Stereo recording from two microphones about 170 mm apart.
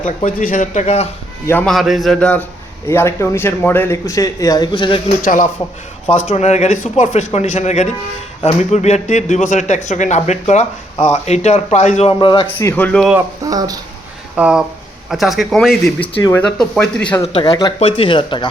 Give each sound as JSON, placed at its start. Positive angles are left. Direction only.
{"t": 0.0, "sound": "speech", "side_deg": 55}
{"t": 1.6, "sound": "a man's voice", "side_deg": 0}
{"t": 5.2, "sound": "speech", "side_deg": 50}
{"t": 12.0, "sound": "a man's voice", "side_deg": 30}
{"t": 12.5, "sound": "a man's voice", "side_deg": 10}
{"t": 13.1, "sound": "speech", "side_deg": -20}
{"t": 14.3, "sound": "a man's voice", "side_deg": -5}
{"t": 17.2, "sound": "speech", "side_deg": 30}